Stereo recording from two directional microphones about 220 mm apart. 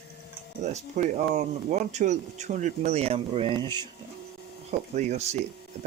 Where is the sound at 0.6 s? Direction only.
30° right (ahead or behind).